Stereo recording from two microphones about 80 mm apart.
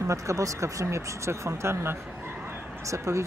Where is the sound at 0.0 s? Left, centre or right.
Right.